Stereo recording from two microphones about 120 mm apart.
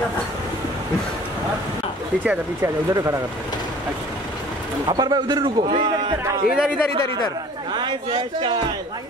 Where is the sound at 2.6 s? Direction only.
25° right (ahead or behind).